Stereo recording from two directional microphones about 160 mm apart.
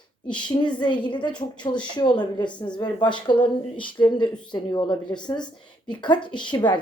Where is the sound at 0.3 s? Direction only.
30° left (ahead or behind).